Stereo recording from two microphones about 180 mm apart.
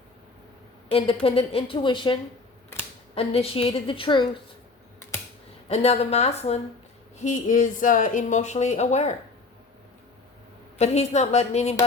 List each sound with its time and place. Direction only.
0.9 s a woman's voice: 30° left (ahead or behind)
3.2 s a woman's voice: 35° left (ahead or behind)
5.6 s a woman's voice: 35° left (ahead or behind)
10.8 s a woman's voice: 40° left (ahead or behind)